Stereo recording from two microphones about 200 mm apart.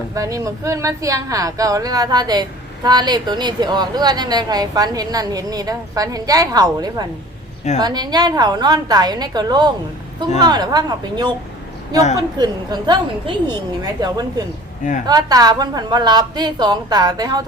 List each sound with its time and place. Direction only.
0.1 s a woman's voice: 15° right (ahead or behind)
12.4 s a woman's voice: 20° right (ahead or behind)